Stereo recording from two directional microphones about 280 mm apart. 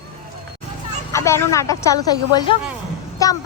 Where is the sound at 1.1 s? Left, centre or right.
Centre.